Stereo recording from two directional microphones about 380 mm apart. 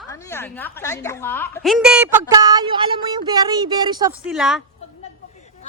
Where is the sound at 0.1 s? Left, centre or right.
Centre.